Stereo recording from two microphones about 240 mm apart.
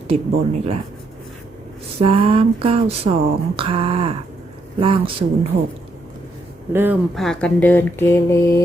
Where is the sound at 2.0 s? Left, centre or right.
Right.